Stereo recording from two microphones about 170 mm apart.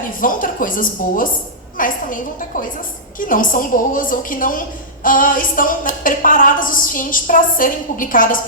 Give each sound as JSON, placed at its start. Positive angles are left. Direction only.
{"t": 0.2, "sound": "a woman's voice", "side_deg": 55}